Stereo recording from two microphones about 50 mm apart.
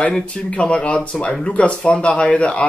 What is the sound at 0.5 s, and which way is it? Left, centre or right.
Speech, left.